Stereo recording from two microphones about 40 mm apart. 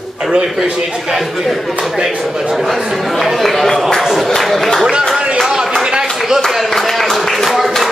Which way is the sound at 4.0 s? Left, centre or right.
Centre.